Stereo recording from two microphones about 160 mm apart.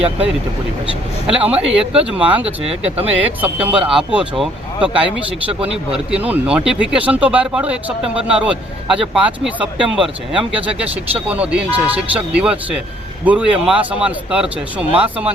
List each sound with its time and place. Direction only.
1.3 s speech: 5° right (ahead or behind)
2.4 s speech: 40° right (ahead or behind)
3.2 s speech: 10° right (ahead or behind)